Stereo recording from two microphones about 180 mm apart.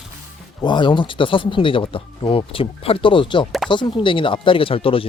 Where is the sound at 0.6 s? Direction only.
25° left (ahead or behind).